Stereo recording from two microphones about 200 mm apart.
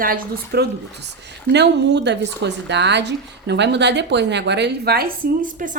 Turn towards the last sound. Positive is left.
turn(degrees=-40)  # may be behind; listen again after turning